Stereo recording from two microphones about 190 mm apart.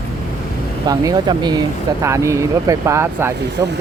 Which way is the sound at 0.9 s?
20° right (ahead or behind).